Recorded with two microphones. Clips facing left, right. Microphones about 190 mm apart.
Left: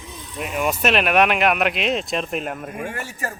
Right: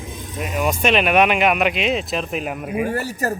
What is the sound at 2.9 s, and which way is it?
Speech, 40° right (ahead or behind).